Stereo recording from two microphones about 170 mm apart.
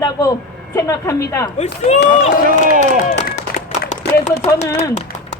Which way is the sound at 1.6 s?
40° left (ahead or behind).